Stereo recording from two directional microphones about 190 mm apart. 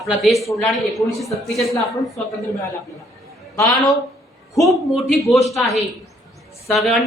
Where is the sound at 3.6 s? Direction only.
20° left (ahead or behind).